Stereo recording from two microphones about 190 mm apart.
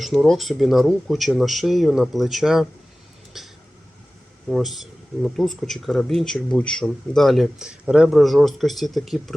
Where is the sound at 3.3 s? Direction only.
Centre (ahead or behind).